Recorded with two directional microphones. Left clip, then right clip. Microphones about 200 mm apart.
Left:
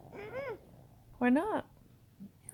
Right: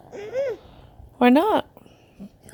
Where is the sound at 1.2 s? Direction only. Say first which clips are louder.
Right 13 dB; 30° right (ahead or behind).